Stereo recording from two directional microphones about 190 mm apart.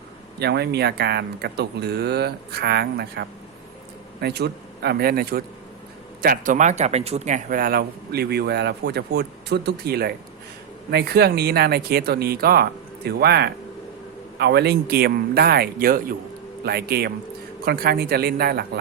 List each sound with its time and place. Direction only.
0.3 s speech: 60° right (ahead or behind)